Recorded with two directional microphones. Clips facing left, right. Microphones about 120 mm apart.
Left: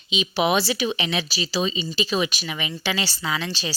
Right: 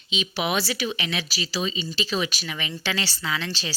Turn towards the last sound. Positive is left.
turn(degrees=15)  # may be behind; listen again after turning